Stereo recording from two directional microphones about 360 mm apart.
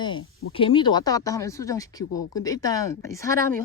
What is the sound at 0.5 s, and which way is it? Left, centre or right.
Speech, centre.